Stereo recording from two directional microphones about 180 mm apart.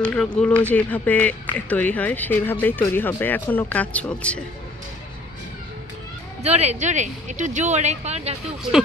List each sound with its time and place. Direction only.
0.0 s speech: 5° left (ahead or behind)
6.4 s speech: 35° right (ahead or behind)